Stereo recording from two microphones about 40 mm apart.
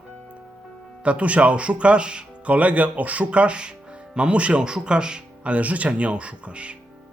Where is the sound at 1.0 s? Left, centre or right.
Right.